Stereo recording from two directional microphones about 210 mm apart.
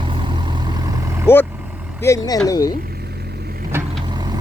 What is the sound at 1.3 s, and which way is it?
Speech, 10° left (ahead or behind).